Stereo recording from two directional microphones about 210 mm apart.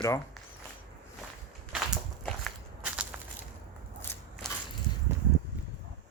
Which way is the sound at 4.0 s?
10° left (ahead or behind).